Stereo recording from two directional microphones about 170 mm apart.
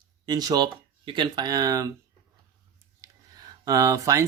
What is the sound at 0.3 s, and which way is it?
Speech, 25° right (ahead or behind).